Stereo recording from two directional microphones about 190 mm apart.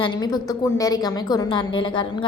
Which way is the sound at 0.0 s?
20° left (ahead or behind).